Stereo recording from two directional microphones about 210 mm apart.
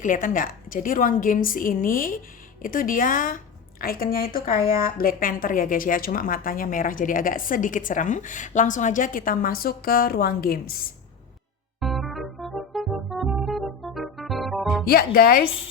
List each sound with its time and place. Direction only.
0.0 s a woman's voice: 40° left (ahead or behind)
11.8 s music: centre (ahead or behind)
14.8 s speech: 45° left (ahead or behind)